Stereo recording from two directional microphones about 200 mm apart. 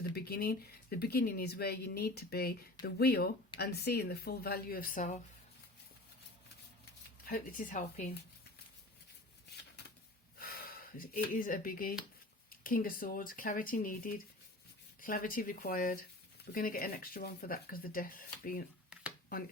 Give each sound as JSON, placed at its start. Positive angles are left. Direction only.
{"t": 0.1, "sound": "speech", "side_deg": 50}
{"t": 7.3, "sound": "speech", "side_deg": 45}
{"t": 10.3, "sound": "speech", "side_deg": 45}